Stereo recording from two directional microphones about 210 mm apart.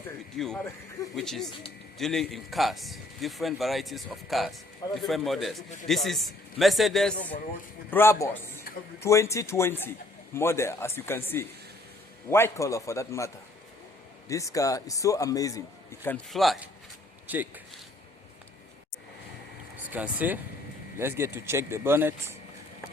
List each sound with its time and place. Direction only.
0.3 s a man's voice: centre (ahead or behind)
7.9 s speech: 10° left (ahead or behind)
16.0 s a man's voice: 5° left (ahead or behind)
19.9 s speech: 5° right (ahead or behind)